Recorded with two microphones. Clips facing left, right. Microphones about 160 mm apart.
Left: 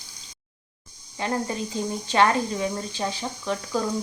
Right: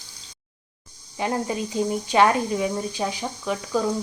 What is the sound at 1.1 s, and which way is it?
Speech, 15° right (ahead or behind).